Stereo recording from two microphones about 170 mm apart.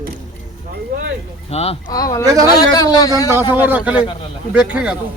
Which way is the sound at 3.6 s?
10° right (ahead or behind).